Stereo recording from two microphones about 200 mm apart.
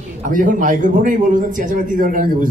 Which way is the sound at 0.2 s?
40° right (ahead or behind).